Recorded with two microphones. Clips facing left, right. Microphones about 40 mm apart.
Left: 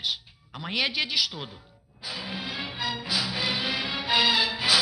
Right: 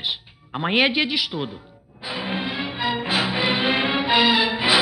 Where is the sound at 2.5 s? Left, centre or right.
Centre.